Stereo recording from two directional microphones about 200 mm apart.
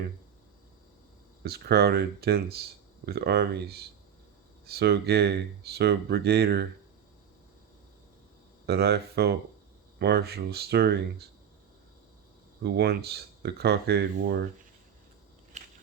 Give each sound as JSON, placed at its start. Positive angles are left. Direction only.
{"t": 1.5, "sound": "speech", "side_deg": -50}
{"t": 8.6, "sound": "speech", "side_deg": -55}
{"t": 12.6, "sound": "speech", "side_deg": -55}
{"t": 15.5, "sound": "biting", "side_deg": -40}